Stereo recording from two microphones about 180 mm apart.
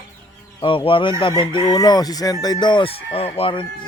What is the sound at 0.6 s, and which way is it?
Chicken, 30° left (ahead or behind).